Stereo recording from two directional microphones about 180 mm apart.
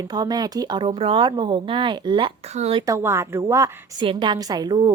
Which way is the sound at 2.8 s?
15° right (ahead or behind).